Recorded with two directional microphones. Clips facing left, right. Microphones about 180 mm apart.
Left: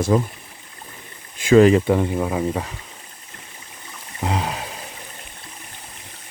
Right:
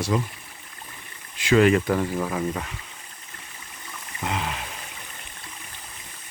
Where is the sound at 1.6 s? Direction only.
25° left (ahead or behind).